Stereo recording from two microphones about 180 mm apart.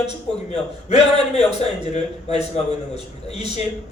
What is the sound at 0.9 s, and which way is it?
Speech, 35° left (ahead or behind).